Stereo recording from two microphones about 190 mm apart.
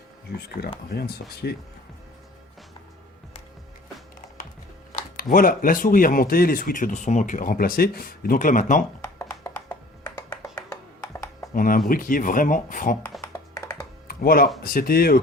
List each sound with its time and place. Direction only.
0.9 s speech: 55° left (ahead or behind)
4.9 s speech: 50° left (ahead or behind)
9.1 s music: 15° left (ahead or behind)
11.5 s speech: 45° left (ahead or behind)
13.2 s music: 15° left (ahead or behind)
14.1 s speech: 50° left (ahead or behind)